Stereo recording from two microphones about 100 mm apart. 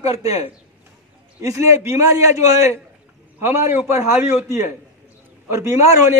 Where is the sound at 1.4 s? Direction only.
35° right (ahead or behind).